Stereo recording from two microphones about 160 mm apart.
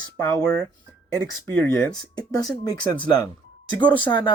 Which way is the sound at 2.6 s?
25° left (ahead or behind).